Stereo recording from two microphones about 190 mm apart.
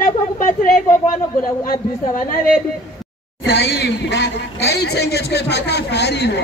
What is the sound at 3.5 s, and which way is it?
A man's voice, 70° left (ahead or behind).